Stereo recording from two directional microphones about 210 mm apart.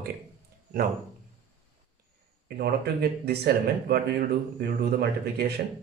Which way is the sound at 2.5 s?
50° right (ahead or behind).